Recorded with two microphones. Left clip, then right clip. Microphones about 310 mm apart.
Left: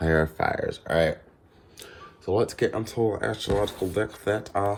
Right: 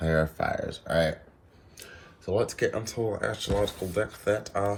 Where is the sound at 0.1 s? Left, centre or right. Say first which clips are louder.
Left 3 dB; left.